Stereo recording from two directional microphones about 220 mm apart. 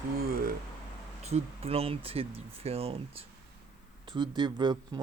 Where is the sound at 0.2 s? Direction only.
40° right (ahead or behind).